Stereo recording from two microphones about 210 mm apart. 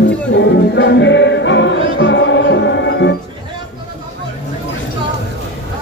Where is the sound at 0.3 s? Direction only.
60° left (ahead or behind).